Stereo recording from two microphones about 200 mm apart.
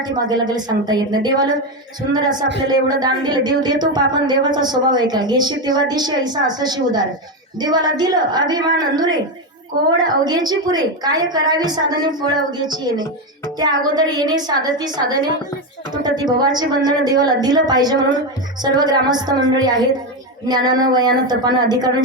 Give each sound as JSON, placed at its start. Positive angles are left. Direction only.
{"t": 0.0, "sound": "speech", "side_deg": -20}